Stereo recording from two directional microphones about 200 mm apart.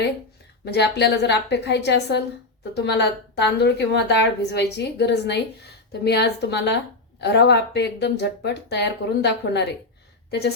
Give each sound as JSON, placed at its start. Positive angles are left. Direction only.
{"t": 0.6, "sound": "a woman's voice", "side_deg": 55}